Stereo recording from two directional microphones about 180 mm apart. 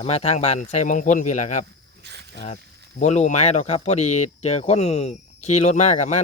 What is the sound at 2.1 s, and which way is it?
Snake, 70° right (ahead or behind).